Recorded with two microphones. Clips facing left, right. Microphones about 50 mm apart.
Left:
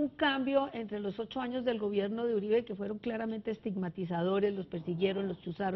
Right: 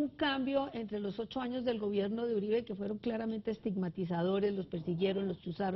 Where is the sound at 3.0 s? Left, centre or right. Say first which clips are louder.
Right 1 dB; left.